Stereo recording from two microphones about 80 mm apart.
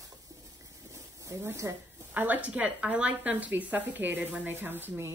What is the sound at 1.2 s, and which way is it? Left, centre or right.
Speech, right.